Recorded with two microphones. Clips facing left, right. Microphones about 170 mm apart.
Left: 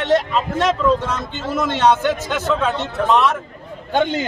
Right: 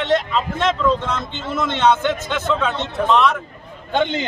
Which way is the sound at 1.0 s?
10° left (ahead or behind).